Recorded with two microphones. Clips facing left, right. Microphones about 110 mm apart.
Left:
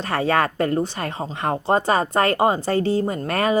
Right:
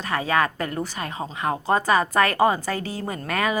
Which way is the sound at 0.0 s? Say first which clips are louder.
Left 2 dB; 35° left (ahead or behind).